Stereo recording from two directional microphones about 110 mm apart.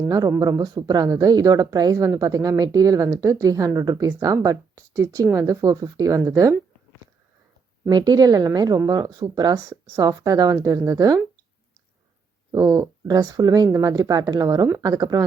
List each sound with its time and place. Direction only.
0.1 s speech: 35° right (ahead or behind)
7.9 s speech: 40° right (ahead or behind)
12.5 s speech: 30° right (ahead or behind)
13.9 s speech: 35° right (ahead or behind)